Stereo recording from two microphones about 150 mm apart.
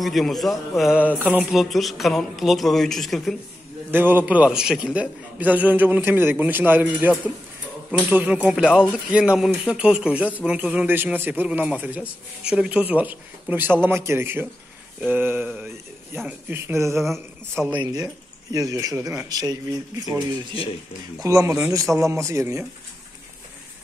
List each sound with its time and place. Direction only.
0.0 s speech: centre (ahead or behind)
3.9 s speech: 15° right (ahead or behind)
17.0 s speech: centre (ahead or behind)
18.5 s speech: 25° right (ahead or behind)